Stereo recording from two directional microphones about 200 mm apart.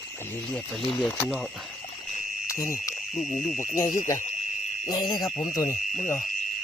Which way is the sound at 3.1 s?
Centre (ahead or behind).